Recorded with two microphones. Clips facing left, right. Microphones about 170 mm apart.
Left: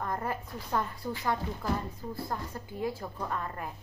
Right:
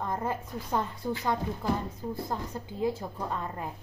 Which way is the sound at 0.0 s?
20° right (ahead or behind).